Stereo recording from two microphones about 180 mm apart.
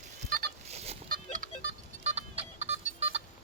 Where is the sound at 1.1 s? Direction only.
50° right (ahead or behind).